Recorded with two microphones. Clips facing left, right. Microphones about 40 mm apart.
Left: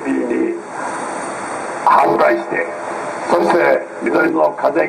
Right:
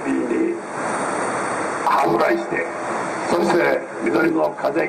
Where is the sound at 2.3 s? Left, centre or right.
Centre.